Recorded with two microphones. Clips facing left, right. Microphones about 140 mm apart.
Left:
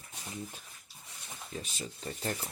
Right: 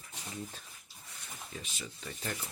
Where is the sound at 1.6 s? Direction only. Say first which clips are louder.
Left 5 dB; 40° left (ahead or behind).